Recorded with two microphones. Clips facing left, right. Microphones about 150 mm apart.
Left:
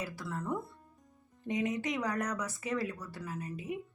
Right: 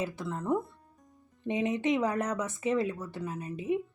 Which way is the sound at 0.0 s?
25° right (ahead or behind).